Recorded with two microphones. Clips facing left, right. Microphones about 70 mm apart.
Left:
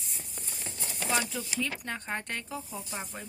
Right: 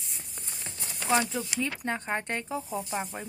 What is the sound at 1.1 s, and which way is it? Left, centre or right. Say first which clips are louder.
Speech: right 5 dB; right.